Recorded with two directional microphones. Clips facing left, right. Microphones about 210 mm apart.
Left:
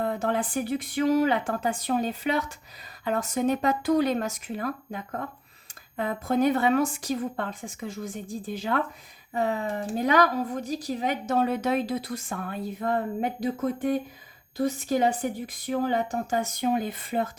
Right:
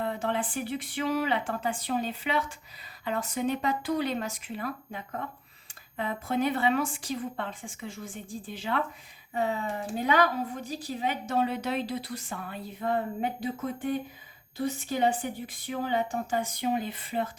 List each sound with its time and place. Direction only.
0.0 s speech: 40° left (ahead or behind)